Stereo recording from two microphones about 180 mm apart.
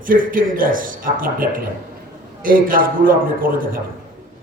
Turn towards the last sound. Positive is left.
turn(degrees=-50)  # may be behind; listen again after turning